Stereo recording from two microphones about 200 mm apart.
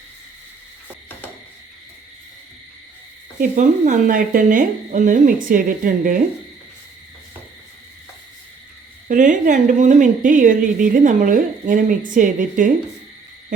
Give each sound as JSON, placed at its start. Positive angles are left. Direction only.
{"t": 3.3, "sound": "a woman's voice", "side_deg": -40}
{"t": 9.0, "sound": "a woman's voice", "side_deg": -40}